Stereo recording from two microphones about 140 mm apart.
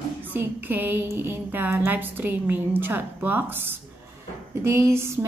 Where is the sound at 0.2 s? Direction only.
15° right (ahead or behind).